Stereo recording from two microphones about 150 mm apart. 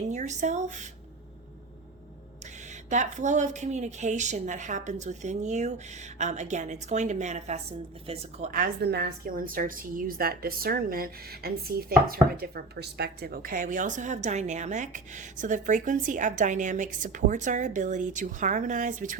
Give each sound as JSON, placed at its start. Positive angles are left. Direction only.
{"t": 0.1, "sound": "a woman's voice", "side_deg": -50}
{"t": 2.9, "sound": "a woman's voice", "side_deg": -55}
{"t": 8.4, "sound": "a woman's voice", "side_deg": -80}